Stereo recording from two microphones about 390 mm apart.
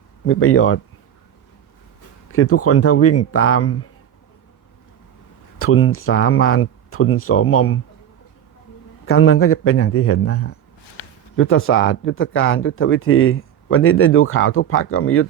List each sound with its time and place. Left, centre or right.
0.3 s speech: left
2.3 s speech: left
5.5 s speech: left
9.0 s speech: left